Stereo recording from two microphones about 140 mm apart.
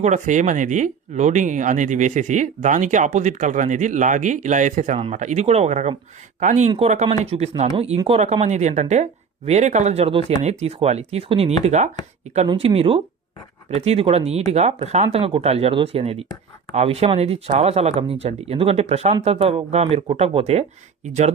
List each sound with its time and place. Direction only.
0.0 s speech: 60° right (ahead or behind)
6.7 s speech: 45° right (ahead or behind)